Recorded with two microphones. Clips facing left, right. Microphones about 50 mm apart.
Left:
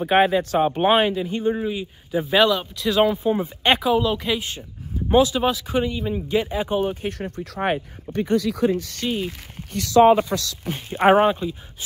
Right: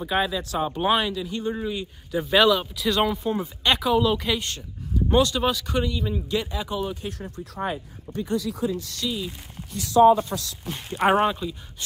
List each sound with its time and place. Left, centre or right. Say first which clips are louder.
0.0 s speech: left 7 dB; left
1.4 s speech: left 5 dB; centre; by 7.4 s left
7.5 s speech: left 6 dB; left
10.7 s speech: left 5 dB; left